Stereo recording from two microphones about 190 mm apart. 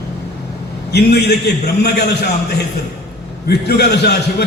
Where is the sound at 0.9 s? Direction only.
60° left (ahead or behind).